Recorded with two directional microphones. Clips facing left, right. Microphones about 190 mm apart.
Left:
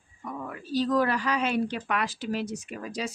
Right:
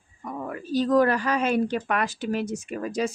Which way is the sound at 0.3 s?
45° right (ahead or behind).